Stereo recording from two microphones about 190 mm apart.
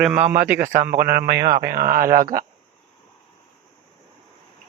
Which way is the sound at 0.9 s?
50° right (ahead or behind).